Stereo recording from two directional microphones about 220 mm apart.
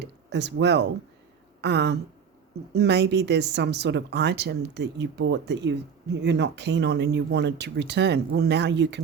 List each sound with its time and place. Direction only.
0.0 s speech: 50° right (ahead or behind)